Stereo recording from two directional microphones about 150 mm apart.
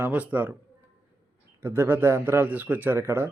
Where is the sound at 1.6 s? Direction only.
15° right (ahead or behind).